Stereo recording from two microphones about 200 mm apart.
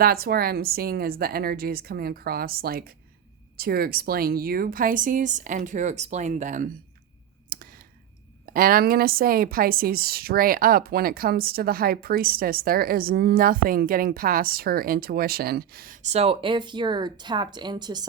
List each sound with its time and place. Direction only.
0.0 s a woman's voice: 50° right (ahead or behind)
7.5 s clicking: 45° right (ahead or behind)
8.5 s a woman's voice: 45° right (ahead or behind); by 18.0 s 20° right (ahead or behind)